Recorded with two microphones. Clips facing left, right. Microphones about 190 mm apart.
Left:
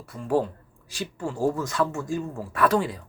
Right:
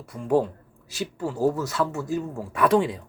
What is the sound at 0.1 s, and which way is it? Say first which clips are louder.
Speech: right 2 dB; 15° right (ahead or behind).